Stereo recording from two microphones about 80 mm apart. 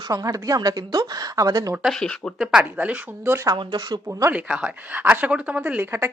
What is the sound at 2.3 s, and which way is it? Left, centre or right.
Speech, centre.